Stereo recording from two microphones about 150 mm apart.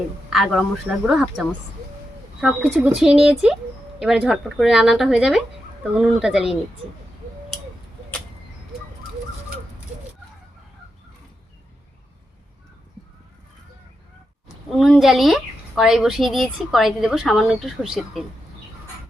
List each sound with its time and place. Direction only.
0.3 s speech: centre (ahead or behind)
14.7 s speech: centre (ahead or behind)